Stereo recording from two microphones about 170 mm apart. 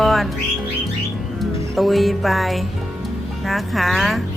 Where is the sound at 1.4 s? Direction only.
Centre (ahead or behind).